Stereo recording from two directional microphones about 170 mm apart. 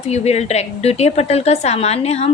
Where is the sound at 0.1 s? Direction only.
40° left (ahead or behind).